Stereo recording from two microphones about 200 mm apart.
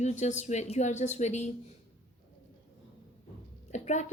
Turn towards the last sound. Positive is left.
turn(degrees=35)  # may be behind; listen again after turning